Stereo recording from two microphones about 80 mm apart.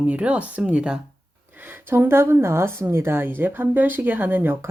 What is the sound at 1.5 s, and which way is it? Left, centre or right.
Speech, right.